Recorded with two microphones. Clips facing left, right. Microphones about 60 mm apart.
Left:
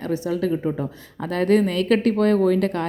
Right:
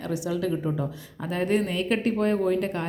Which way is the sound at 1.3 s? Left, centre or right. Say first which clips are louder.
Left 6 dB; left.